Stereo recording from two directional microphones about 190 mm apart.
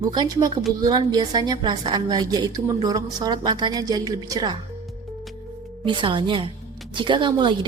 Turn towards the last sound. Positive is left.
turn(degrees=-25)  # may be behind; listen again after turning